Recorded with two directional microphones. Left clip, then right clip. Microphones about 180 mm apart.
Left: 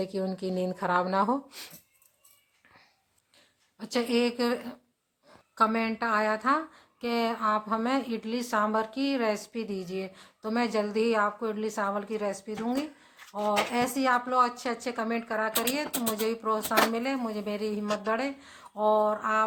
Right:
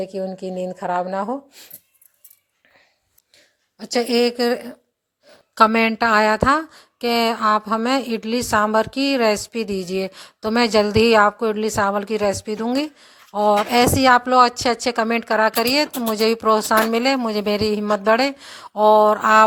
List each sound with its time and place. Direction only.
0.0 s a woman's voice: 15° right (ahead or behind)
3.8 s a woman's voice: 30° right (ahead or behind)
5.5 s speech: 50° right (ahead or behind)